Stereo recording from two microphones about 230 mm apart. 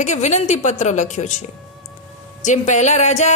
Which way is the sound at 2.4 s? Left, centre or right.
Left.